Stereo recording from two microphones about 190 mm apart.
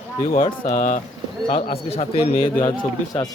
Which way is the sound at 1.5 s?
30° left (ahead or behind).